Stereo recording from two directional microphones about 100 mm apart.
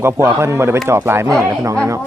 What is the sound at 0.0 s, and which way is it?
Speech, 25° right (ahead or behind).